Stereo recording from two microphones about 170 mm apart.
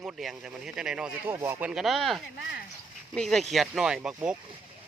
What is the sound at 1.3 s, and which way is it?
Speech, 15° right (ahead or behind).